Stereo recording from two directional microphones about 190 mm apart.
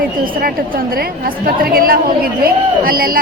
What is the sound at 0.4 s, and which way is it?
A man's voice, 50° right (ahead or behind).